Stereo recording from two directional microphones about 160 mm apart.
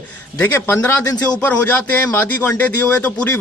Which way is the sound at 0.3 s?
10° left (ahead or behind).